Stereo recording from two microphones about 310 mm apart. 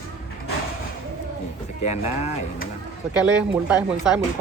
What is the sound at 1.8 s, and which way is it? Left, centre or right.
Speech, left.